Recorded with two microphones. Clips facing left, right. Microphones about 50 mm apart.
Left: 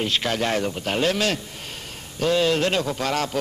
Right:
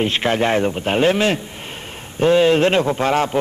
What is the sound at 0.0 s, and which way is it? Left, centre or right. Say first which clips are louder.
A man's voice: right 6 dB; right.